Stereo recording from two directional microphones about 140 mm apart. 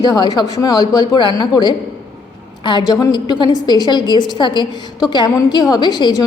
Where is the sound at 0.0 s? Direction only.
30° left (ahead or behind).